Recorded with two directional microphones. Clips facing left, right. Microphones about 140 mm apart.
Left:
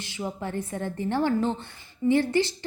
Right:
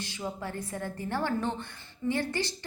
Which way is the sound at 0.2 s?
20° left (ahead or behind).